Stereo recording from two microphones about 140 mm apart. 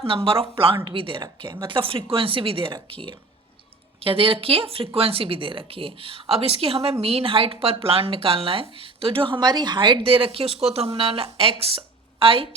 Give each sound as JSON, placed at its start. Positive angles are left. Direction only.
{"t": 0.0, "sound": "speech", "side_deg": -40}